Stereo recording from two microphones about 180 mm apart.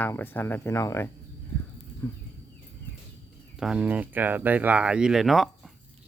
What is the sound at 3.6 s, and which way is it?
Speech, 5° right (ahead or behind).